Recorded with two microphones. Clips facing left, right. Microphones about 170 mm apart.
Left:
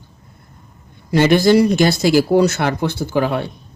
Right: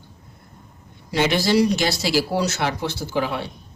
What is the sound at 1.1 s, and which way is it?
Speech, 50° left (ahead or behind).